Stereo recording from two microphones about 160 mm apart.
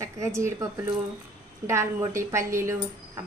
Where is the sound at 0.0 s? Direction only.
20° right (ahead or behind).